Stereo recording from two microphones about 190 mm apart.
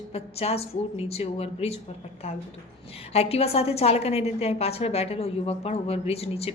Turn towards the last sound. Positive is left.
turn(degrees=30)  # may be behind; listen again after turning